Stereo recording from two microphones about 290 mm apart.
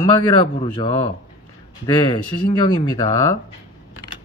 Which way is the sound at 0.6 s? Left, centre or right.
Centre.